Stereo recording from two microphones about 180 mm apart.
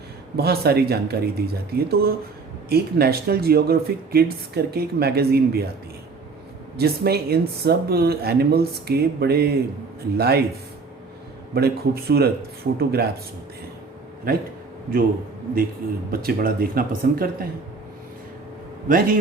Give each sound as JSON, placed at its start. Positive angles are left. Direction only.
{"t": 0.3, "sound": "speech", "side_deg": -60}
{"t": 6.7, "sound": "speech", "side_deg": -60}
{"t": 11.5, "sound": "speech", "side_deg": -60}
{"t": 14.3, "sound": "a man's voice", "side_deg": -55}
{"t": 16.1, "sound": "speech", "side_deg": -55}
{"t": 18.9, "sound": "a man's voice", "side_deg": -50}